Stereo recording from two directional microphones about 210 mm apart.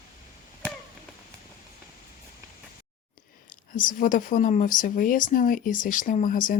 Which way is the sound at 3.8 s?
40° left (ahead or behind).